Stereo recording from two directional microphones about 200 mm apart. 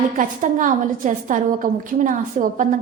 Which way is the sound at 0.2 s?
40° right (ahead or behind).